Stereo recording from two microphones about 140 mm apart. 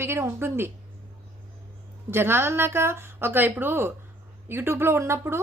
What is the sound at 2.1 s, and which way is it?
A woman's voice, 15° right (ahead or behind).